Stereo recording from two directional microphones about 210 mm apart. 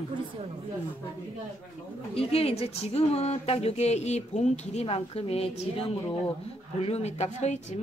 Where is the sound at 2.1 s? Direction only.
30° left (ahead or behind).